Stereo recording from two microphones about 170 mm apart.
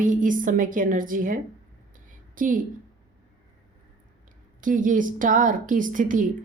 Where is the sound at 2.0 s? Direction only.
55° right (ahead or behind).